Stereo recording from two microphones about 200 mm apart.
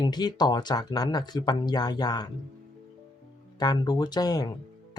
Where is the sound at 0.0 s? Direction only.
20° left (ahead or behind).